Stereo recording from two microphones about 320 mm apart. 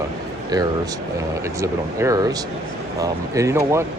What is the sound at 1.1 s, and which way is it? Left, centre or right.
Speech, centre.